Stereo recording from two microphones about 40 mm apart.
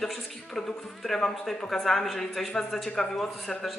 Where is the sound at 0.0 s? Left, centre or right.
Centre.